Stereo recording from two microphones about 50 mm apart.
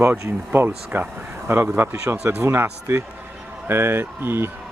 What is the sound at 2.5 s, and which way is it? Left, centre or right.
Speech, right.